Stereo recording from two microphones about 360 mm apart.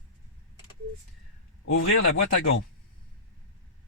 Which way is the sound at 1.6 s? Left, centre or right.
Left.